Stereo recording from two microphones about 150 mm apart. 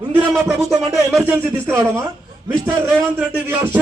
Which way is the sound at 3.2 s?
15° right (ahead or behind).